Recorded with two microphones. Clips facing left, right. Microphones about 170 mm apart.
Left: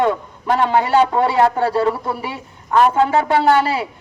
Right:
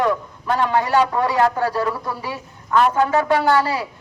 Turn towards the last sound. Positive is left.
turn(degrees=25)  # may be behind; listen again after turning